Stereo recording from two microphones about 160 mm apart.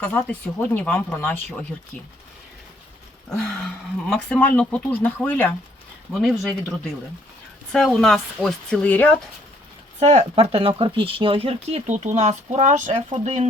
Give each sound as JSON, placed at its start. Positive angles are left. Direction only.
{"t": 0.0, "sound": "speech", "side_deg": 10}
{"t": 4.1, "sound": "speech", "side_deg": 5}
{"t": 6.1, "sound": "speech", "side_deg": 0}
{"t": 10.0, "sound": "speech", "side_deg": -40}